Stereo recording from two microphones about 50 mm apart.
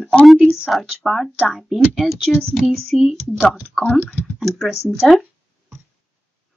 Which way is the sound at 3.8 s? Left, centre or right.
Left.